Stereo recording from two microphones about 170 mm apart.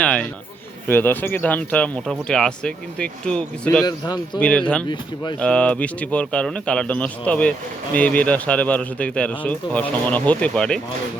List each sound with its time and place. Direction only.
0.0 s a man's voice: 10° left (ahead or behind)
3.8 s speech: 25° left (ahead or behind)
4.4 s speech: 5° left (ahead or behind)